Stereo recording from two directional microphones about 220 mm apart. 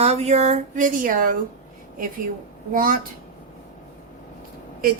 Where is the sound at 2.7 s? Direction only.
40° right (ahead or behind).